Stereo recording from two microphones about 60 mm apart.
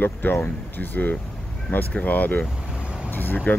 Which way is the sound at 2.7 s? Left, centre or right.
Centre.